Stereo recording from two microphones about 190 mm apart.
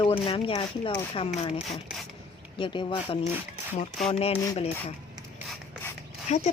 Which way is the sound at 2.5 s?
25° left (ahead or behind).